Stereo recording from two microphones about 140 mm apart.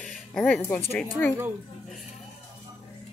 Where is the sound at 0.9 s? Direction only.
15° left (ahead or behind).